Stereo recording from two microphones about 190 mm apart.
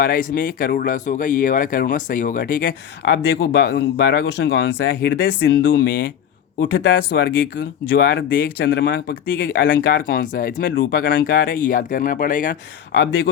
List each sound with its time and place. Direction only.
0.0 s speech: 50° left (ahead or behind); by 5.9 s 65° left (ahead or behind)
6.6 s speech: 50° left (ahead or behind)